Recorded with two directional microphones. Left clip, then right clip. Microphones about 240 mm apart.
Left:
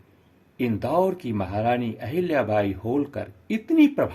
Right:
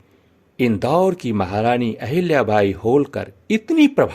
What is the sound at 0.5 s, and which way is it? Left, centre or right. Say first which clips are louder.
Speech: right 6 dB; right.